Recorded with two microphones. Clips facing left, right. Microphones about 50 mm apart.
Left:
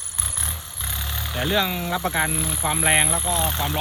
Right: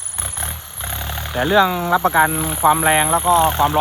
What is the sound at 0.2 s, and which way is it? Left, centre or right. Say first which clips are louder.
Vehicle: right 4 dB; centre.